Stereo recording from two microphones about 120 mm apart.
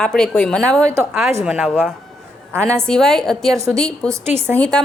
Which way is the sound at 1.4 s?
5° right (ahead or behind).